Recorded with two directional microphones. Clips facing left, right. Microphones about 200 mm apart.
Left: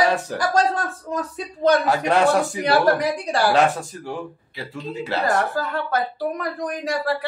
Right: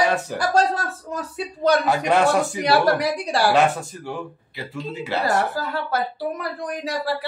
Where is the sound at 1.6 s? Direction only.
10° right (ahead or behind).